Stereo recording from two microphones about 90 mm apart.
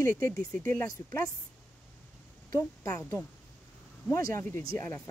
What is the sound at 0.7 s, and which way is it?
Speech, 35° left (ahead or behind).